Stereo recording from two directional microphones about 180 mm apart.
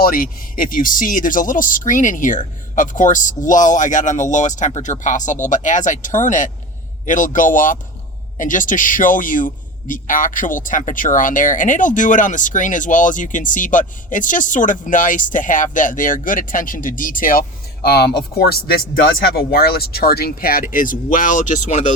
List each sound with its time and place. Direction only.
0.0 s a man's voice: 55° left (ahead or behind)
17.8 s speech: 60° left (ahead or behind); by 21.9 s 40° left (ahead or behind)